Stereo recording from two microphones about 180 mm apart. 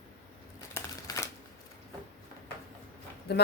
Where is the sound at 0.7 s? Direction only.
15° left (ahead or behind).